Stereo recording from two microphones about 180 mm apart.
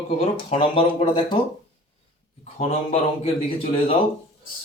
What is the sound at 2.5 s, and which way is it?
Speech, 35° left (ahead or behind).